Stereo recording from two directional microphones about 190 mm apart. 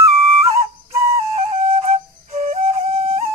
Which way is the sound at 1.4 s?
35° right (ahead or behind).